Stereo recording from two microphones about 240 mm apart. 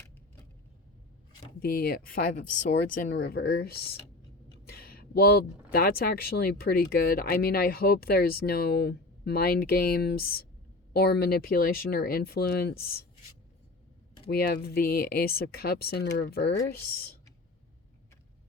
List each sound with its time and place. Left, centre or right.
1.5 s speech: left
14.3 s speech: left